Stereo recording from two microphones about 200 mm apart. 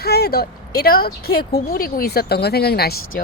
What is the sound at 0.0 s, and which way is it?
Speech, 50° left (ahead or behind).